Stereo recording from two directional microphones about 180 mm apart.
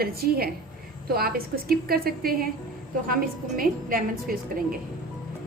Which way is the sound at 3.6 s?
55° right (ahead or behind).